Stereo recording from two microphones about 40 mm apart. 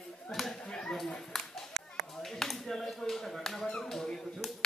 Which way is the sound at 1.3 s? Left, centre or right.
Centre.